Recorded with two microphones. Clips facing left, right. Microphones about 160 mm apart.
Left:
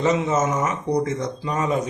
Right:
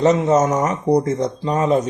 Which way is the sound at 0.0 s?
40° right (ahead or behind).